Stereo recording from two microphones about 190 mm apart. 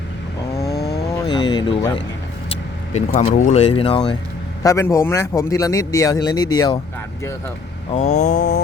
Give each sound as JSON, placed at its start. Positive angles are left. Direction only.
{"t": 0.8, "sound": "vehicle", "side_deg": 55}
{"t": 1.1, "sound": "speech", "side_deg": 20}
{"t": 2.9, "sound": "speech", "side_deg": 35}
{"t": 7.9, "sound": "speech", "side_deg": 35}